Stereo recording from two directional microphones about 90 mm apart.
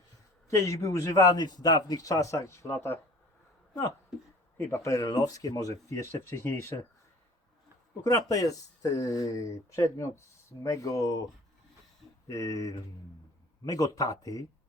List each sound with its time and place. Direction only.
0.4 s speech: 35° left (ahead or behind)
4.5 s speech: 25° left (ahead or behind)
4.8 s speech: 35° left (ahead or behind)
8.0 s speech: 40° left (ahead or behind)
12.3 s speech: 40° left (ahead or behind)